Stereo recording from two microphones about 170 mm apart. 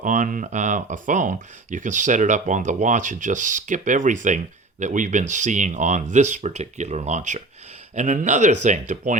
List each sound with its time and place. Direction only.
0.0 s speech: 50° right (ahead or behind)